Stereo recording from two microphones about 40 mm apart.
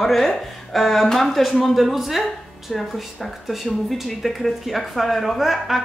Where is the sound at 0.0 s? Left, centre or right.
Centre.